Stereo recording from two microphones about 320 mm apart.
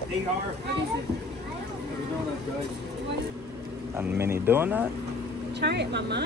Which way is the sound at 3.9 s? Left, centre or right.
Centre.